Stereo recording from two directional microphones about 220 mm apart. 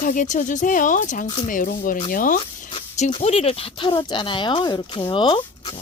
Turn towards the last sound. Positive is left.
turn(degrees=20)  # may be behind; listen again after turning